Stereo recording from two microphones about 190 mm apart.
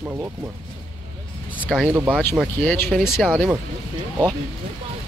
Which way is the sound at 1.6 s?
5° right (ahead or behind).